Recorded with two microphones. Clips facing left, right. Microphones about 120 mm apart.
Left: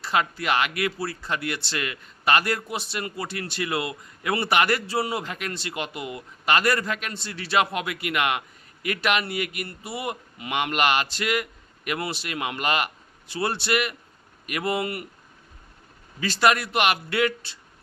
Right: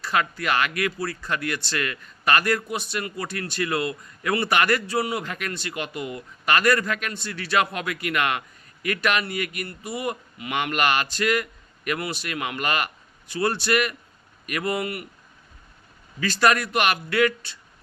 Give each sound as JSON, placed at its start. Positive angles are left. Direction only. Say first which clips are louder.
{"t": 0.0, "sound": "speech", "louder": "even", "side_deg": 25}
{"t": 16.2, "sound": "speech", "louder": "even", "side_deg": 25}